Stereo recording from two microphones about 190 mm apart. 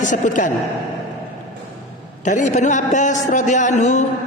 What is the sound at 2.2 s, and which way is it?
A man's voice, 40° left (ahead or behind).